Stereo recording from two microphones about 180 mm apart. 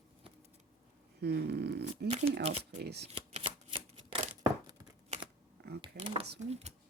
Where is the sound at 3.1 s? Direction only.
30° right (ahead or behind).